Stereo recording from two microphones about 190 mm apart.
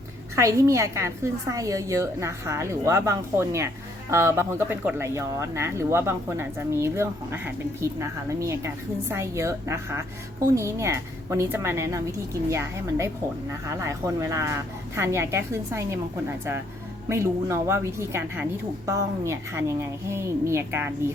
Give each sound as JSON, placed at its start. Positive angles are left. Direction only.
{"t": 0.3, "sound": "speech", "side_deg": -15}
{"t": 17.1, "sound": "speech", "side_deg": -15}